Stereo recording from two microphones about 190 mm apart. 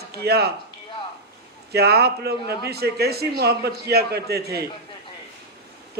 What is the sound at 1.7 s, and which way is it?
A man's voice, 55° right (ahead or behind).